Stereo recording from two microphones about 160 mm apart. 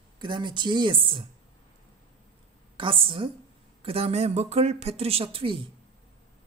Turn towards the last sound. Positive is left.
turn(degrees=-35)  # may be behind; listen again after turning